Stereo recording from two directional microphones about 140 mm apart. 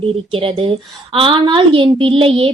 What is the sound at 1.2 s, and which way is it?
A woman's voice, 35° right (ahead or behind).